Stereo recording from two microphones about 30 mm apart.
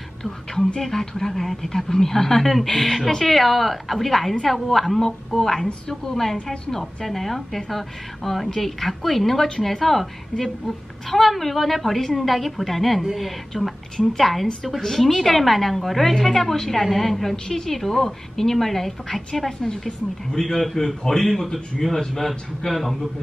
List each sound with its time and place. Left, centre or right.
0.7 s a woman's voice: centre
7.1 s a woman's voice: centre
11.1 s a woman's voice: centre
13.5 s a woman's voice: centre
22.7 s a man's voice: left